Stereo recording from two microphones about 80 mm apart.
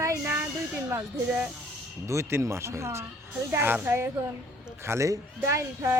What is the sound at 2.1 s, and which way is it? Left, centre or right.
A child's voice, right.